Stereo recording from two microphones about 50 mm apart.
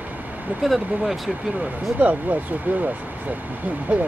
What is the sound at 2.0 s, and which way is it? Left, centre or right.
Speech, right.